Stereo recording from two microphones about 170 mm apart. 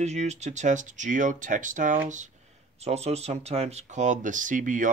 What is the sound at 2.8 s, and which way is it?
Speech, 40° right (ahead or behind).